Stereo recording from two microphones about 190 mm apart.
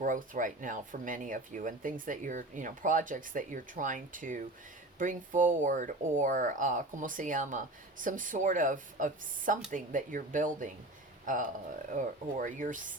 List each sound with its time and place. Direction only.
0.0 s speech: 45° right (ahead or behind)